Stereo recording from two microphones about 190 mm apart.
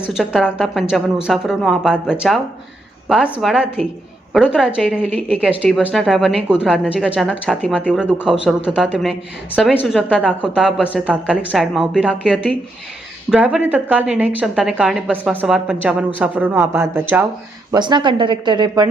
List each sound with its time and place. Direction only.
0.1 s a woman's voice: centre (ahead or behind)
7.9 s a woman's voice: 5° right (ahead or behind)
17.7 s speech: 25° right (ahead or behind)